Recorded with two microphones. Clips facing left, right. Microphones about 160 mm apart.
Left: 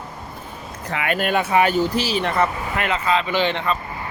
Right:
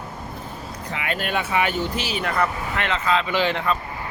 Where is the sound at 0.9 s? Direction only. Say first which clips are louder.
Left 5 dB; 60° left (ahead or behind); by 2.5 s 25° left (ahead or behind).